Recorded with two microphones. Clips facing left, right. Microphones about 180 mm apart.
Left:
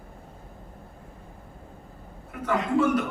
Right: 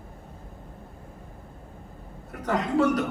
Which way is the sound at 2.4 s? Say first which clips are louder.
Even; 40° right (ahead or behind).